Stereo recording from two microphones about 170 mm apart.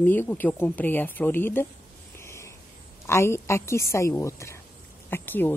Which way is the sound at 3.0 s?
15° left (ahead or behind).